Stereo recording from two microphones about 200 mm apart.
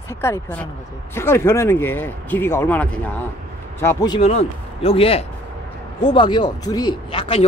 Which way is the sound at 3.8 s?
20° left (ahead or behind).